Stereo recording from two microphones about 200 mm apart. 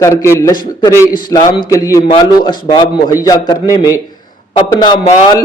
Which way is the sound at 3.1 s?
15° left (ahead or behind).